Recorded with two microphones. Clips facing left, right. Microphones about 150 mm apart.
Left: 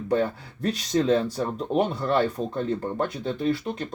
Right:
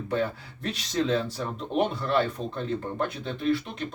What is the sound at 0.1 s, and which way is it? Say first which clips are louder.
Speech: left 4 dB; 45° left (ahead or behind).